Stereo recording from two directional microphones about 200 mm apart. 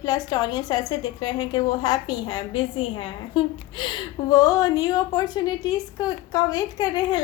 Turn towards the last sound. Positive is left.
turn(degrees=20)  # may be behind; listen again after turning